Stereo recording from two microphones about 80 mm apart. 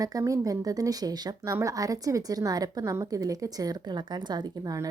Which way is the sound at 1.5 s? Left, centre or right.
Right.